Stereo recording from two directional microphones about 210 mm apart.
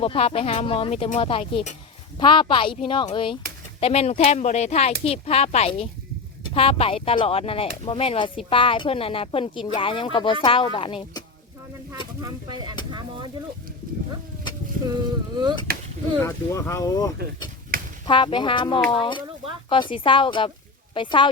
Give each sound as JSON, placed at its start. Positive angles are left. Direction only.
{"t": 0.0, "sound": "speech", "side_deg": 30}
{"t": 12.2, "sound": "speech", "side_deg": -20}
{"t": 15.7, "sound": "chop", "side_deg": -45}
{"t": 16.2, "sound": "speech", "side_deg": 15}